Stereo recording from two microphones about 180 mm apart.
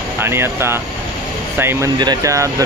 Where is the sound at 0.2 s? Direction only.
15° right (ahead or behind).